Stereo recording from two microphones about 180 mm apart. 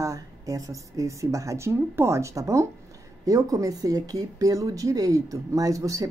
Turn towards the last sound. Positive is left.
turn(degrees=-20)  # may be behind; listen again after turning